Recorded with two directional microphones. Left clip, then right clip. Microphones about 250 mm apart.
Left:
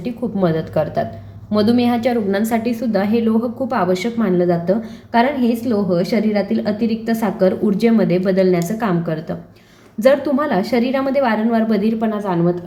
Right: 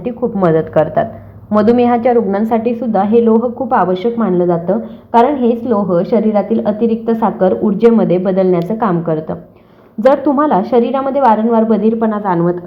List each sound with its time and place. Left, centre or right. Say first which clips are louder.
0.0 s a woman's voice: right 6 dB; centre